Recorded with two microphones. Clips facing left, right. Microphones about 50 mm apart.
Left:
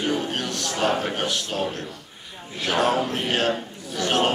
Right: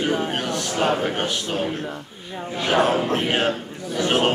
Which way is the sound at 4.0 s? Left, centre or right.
Right.